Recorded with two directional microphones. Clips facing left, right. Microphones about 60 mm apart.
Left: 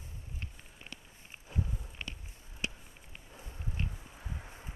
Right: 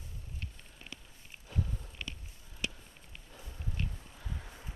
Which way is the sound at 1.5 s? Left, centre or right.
Left.